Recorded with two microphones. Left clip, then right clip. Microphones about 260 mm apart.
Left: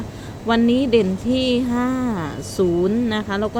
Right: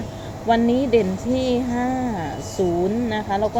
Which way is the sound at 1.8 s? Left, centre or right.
Left.